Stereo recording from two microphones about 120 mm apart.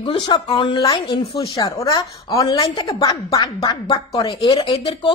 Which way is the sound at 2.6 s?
40° left (ahead or behind).